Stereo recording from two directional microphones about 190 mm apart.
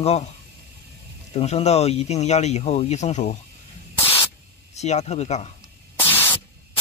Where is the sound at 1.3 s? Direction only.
35° left (ahead or behind).